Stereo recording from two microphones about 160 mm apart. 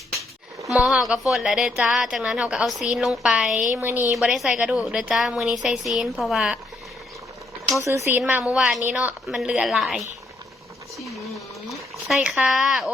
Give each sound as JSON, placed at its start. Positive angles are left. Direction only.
{"t": 0.7, "sound": "a woman's voice", "side_deg": 0}
{"t": 4.1, "sound": "a woman's voice", "side_deg": 0}
{"t": 7.9, "sound": "a woman's voice", "side_deg": -15}
{"t": 10.9, "sound": "a sound", "side_deg": 0}